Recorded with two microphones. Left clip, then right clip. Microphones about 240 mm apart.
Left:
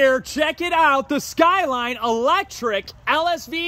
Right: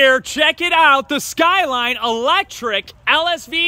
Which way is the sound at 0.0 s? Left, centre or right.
Centre.